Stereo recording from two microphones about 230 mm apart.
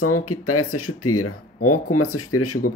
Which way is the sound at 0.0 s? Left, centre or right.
Left.